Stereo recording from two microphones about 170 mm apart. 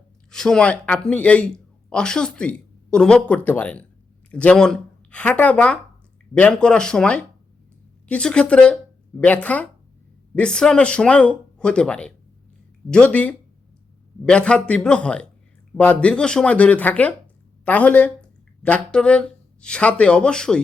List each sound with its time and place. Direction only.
0.3 s speech: 5° left (ahead or behind)